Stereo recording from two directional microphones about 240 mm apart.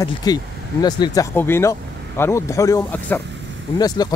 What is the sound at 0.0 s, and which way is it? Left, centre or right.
Speech, centre.